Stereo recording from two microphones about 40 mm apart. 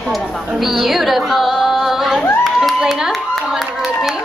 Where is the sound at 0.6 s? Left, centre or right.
Centre.